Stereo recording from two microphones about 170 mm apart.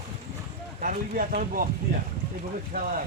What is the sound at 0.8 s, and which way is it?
Speech, 55° right (ahead or behind).